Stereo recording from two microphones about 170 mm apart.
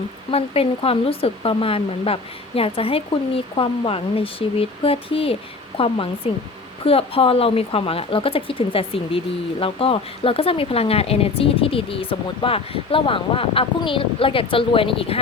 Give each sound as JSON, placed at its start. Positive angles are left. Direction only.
{"t": 0.3, "sound": "speech", "side_deg": 35}